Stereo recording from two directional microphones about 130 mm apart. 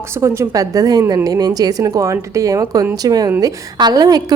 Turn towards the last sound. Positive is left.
turn(degrees=-30)  # may be behind; listen again after turning